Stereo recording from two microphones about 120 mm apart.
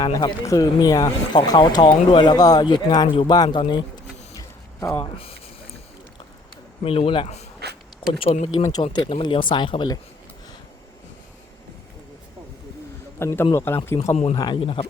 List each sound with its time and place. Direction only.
0.0 s speech: 30° left (ahead or behind)
1.4 s speech: 40° left (ahead or behind)
4.8 s a man's voice: 25° left (ahead or behind)
6.8 s speech: 50° left (ahead or behind)
8.3 s speech: 75° left (ahead or behind)
9.0 s speech: 50° left (ahead or behind)
13.1 s a man's voice: 20° left (ahead or behind)
14.3 s speech: 35° left (ahead or behind)
14.6 s speech: 50° left (ahead or behind)